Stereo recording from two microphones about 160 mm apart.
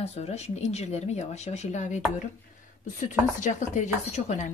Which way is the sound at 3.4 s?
50° left (ahead or behind).